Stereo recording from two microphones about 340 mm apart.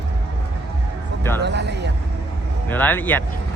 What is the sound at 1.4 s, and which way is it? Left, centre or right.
Speech, right.